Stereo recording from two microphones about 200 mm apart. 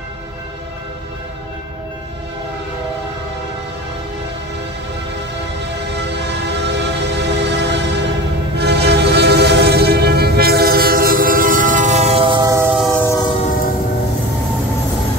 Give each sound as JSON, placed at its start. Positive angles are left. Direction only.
{"t": 5.9, "sound": "train", "side_deg": -60}
{"t": 13.0, "sound": "train", "side_deg": 15}